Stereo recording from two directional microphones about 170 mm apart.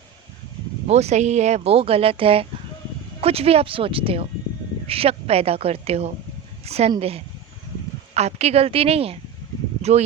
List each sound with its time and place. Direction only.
0.9 s speech: 40° right (ahead or behind)
8.1 s speech: 40° right (ahead or behind)